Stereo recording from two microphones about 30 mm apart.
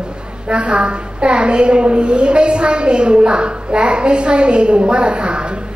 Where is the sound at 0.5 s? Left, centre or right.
Right.